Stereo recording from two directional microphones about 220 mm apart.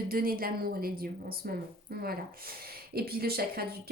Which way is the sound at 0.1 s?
40° right (ahead or behind).